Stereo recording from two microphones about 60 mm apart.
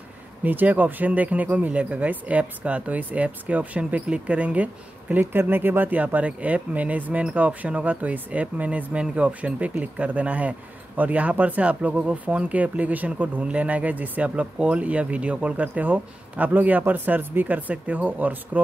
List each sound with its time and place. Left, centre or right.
0.4 s speech: right
5.2 s speech: right